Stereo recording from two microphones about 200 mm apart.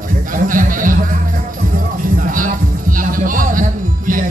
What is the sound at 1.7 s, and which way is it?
Music, 40° right (ahead or behind).